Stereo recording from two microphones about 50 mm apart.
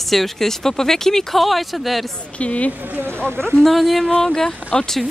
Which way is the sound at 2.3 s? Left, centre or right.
Left.